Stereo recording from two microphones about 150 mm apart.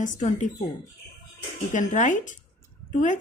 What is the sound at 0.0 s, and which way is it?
Speech, 55° left (ahead or behind).